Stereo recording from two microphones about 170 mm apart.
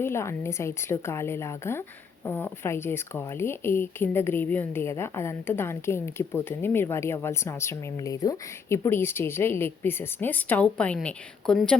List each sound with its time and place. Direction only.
0.0 s speech: 15° left (ahead or behind)